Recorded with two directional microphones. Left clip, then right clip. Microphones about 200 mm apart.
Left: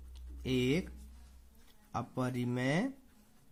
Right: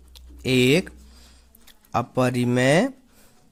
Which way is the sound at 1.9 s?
40° right (ahead or behind).